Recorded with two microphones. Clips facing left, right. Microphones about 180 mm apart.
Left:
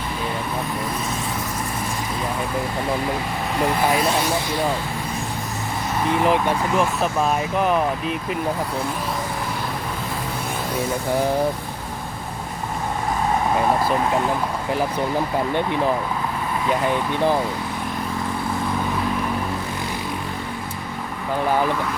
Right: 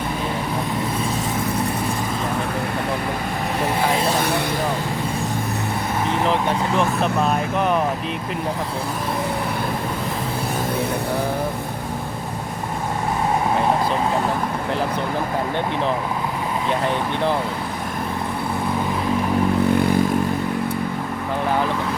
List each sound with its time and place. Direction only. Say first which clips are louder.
6.2 s speech: left 1 dB; 5° left (ahead or behind)